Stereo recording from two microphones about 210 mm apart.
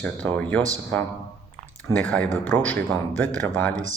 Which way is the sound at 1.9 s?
5° left (ahead or behind).